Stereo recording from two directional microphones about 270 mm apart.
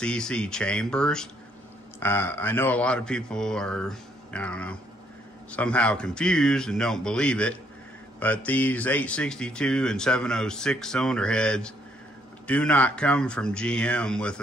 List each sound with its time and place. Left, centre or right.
0.0 s speech: centre